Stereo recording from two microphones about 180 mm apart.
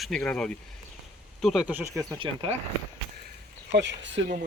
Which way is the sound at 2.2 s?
30° right (ahead or behind).